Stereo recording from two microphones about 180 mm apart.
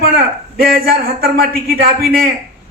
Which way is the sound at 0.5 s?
55° right (ahead or behind).